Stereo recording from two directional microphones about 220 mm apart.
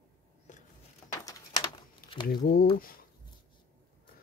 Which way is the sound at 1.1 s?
20° left (ahead or behind).